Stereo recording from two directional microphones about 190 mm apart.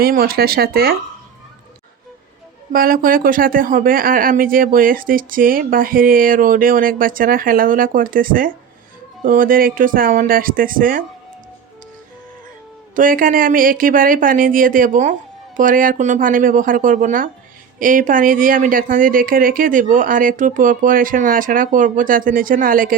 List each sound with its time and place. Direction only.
0.0 s speech: 55° right (ahead or behind)
2.7 s speech: 50° right (ahead or behind)
13.0 s speech: 45° right (ahead or behind)